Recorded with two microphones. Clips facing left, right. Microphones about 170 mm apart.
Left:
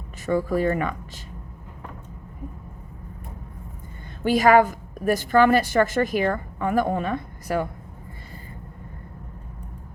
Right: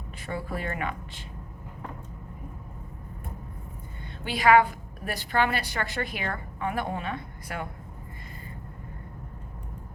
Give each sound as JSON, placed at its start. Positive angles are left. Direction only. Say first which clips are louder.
{"t": 0.3, "sound": "speech", "louder": "left 10 dB", "side_deg": 40}
{"t": 4.2, "sound": "a woman's voice", "louder": "left 4 dB", "side_deg": 45}